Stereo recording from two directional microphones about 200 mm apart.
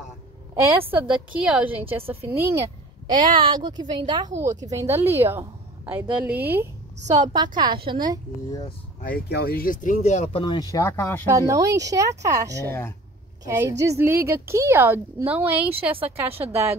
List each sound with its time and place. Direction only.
0.7 s a woman's voice: 10° right (ahead or behind)
3.3 s a woman's voice: 25° right (ahead or behind)
7.1 s a woman's voice: 20° right (ahead or behind)
9.0 s speech: 50° left (ahead or behind); by 11.2 s 10° left (ahead or behind)
11.2 s a woman's voice: 15° right (ahead or behind)